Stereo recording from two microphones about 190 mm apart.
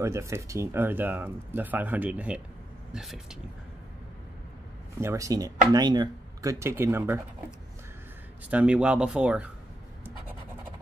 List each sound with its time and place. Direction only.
0.0 s speech: 15° right (ahead or behind)
5.0 s speech: 15° right (ahead or behind)
8.5 s speech: 5° right (ahead or behind)